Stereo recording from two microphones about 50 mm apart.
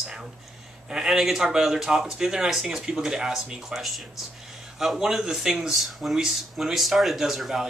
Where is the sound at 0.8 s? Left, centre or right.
Centre.